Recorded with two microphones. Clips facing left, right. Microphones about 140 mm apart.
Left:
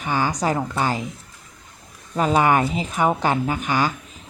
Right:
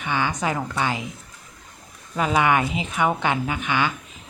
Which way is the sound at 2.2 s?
35° left (ahead or behind).